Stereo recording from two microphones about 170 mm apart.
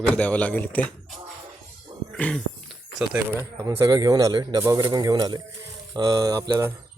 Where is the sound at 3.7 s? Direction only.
20° right (ahead or behind).